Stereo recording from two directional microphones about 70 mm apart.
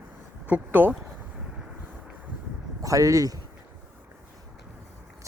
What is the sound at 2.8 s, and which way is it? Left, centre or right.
Speech, right.